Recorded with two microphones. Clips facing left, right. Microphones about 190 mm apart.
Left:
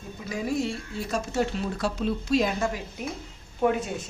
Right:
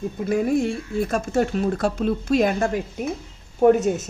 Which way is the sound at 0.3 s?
55° right (ahead or behind).